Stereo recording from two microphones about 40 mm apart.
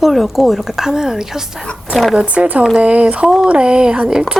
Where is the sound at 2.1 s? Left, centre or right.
Right.